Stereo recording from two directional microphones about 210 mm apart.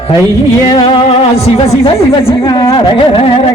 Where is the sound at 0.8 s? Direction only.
25° left (ahead or behind).